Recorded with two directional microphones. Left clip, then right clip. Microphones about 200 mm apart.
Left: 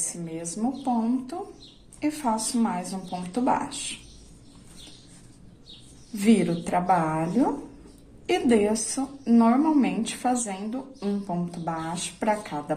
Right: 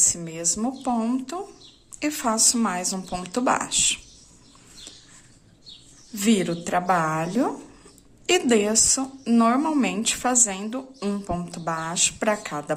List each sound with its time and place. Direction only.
0.1 s a woman's voice: 30° right (ahead or behind)
6.1 s a woman's voice: 25° right (ahead or behind)